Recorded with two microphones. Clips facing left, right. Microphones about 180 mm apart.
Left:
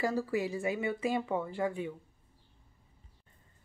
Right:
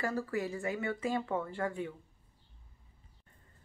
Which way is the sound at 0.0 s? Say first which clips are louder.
Left 3 dB; 15° left (ahead or behind).